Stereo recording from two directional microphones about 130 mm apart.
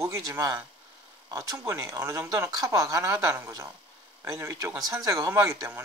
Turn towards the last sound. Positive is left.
turn(degrees=-20)  # may be behind; listen again after turning